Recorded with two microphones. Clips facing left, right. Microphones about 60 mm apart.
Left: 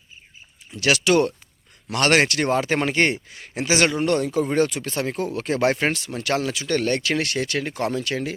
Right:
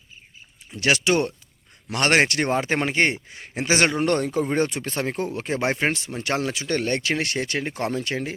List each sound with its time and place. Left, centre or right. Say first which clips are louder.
0.8 s speech: left 2 dB; right